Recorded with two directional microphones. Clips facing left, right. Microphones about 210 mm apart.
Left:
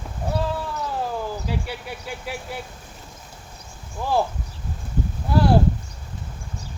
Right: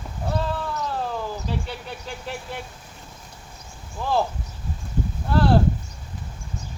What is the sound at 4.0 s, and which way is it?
Speech, 10° left (ahead or behind).